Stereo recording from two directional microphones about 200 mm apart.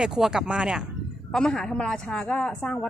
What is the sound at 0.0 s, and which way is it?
Speech, 5° right (ahead or behind).